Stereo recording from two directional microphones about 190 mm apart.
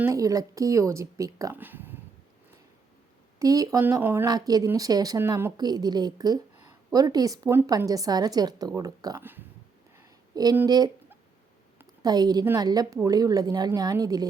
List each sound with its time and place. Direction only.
0.0 s speech: 15° right (ahead or behind)
3.3 s speech: 20° right (ahead or behind)